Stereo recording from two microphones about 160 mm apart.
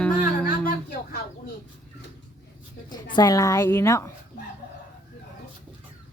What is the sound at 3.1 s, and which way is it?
Speech, 20° left (ahead or behind).